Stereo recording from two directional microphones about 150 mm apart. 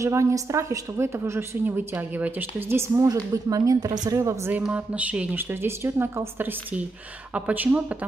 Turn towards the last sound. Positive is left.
turn(degrees=-10)  # may be behind; listen again after turning